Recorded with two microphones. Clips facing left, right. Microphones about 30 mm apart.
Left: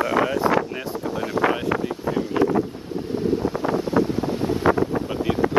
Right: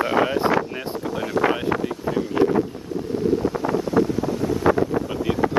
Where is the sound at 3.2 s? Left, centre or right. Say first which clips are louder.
Right 2 dB; left.